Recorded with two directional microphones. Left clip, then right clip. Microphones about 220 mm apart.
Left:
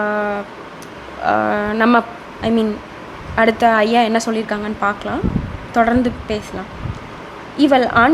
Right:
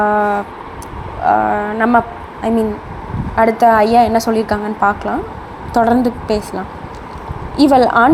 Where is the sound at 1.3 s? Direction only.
15° left (ahead or behind).